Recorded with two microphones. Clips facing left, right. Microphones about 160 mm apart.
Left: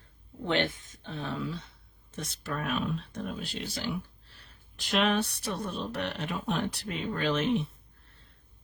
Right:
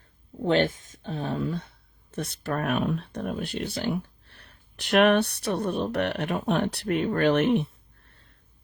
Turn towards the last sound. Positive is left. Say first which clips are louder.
# right 6 dB
turn(degrees=-60)  # may be behind; listen again after turning